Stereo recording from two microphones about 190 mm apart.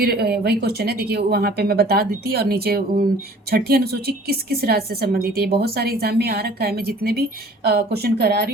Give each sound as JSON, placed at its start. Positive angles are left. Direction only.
{"t": 0.0, "sound": "speech", "side_deg": -55}